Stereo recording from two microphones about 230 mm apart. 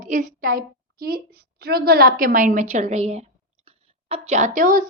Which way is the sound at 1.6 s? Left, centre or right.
Right.